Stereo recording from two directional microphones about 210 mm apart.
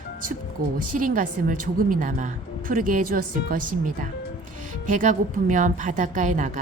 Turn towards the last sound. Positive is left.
turn(degrees=-35)  # may be behind; listen again after turning